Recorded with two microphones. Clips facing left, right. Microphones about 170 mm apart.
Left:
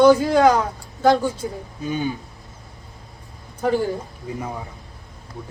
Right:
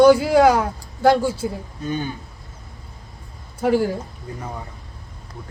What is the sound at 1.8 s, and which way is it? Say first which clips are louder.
Speech: left 1 dB; 10° left (ahead or behind).